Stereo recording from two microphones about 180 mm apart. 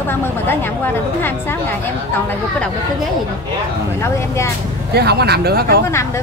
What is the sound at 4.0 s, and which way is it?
Speech, 15° left (ahead or behind).